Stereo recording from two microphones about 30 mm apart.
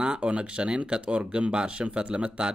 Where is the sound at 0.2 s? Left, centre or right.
Right.